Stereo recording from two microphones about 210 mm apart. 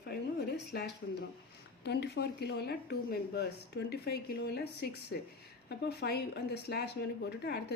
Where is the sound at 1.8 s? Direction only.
50° left (ahead or behind).